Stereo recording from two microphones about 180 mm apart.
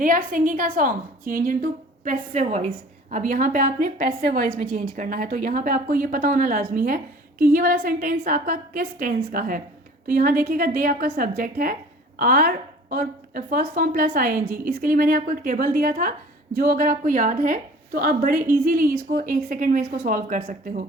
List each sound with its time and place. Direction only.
0.0 s a woman's voice: 50° right (ahead or behind)
2.0 s a woman's voice: 40° right (ahead or behind)